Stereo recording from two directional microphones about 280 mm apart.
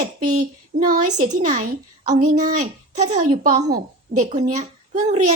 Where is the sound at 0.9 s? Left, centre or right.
Right.